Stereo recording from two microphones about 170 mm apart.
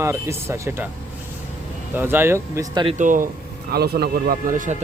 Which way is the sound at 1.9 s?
10° right (ahead or behind).